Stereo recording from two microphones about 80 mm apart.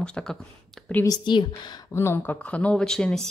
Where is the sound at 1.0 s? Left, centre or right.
Left.